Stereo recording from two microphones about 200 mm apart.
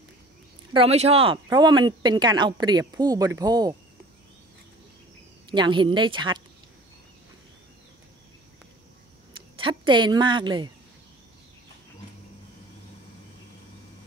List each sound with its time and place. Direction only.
0.7 s speech: 30° right (ahead or behind)
5.5 s speech: 25° right (ahead or behind)
9.6 s a woman's voice: 25° right (ahead or behind)